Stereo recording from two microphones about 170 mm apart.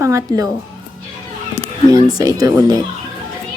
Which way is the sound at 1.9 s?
20° right (ahead or behind).